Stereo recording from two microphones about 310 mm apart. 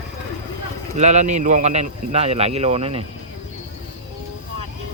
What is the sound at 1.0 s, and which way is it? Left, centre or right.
Speech, right.